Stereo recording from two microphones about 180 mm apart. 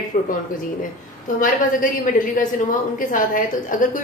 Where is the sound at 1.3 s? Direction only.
45° left (ahead or behind).